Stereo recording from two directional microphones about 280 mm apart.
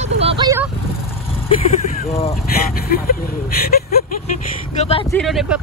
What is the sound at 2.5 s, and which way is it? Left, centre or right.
Speech, left.